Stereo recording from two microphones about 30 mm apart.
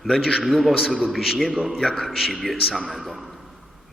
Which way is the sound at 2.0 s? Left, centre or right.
Centre.